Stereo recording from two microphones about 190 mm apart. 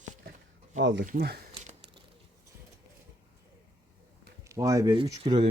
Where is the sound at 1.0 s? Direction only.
50° right (ahead or behind).